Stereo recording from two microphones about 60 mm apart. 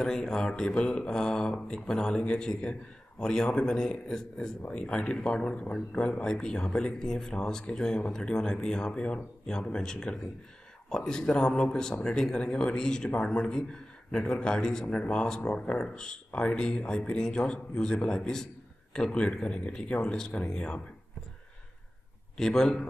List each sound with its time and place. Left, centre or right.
0.0 s speech: centre
22.4 s speech: centre